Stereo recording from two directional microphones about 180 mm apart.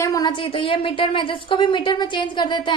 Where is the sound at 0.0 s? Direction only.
20° left (ahead or behind).